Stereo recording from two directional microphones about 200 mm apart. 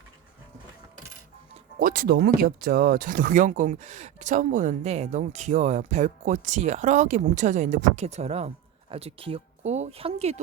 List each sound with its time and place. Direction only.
1.8 s speech: 45° right (ahead or behind)